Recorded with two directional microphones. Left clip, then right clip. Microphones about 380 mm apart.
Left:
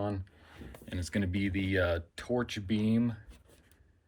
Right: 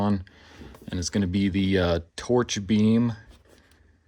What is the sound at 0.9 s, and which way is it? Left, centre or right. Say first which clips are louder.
Speech: right 7 dB; centre.